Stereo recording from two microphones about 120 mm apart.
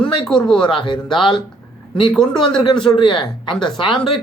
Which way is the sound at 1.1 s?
45° left (ahead or behind).